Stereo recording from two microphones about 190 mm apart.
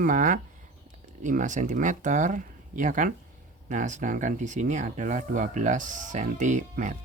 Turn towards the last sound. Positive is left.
turn(degrees=-40)  # may be behind; listen again after turning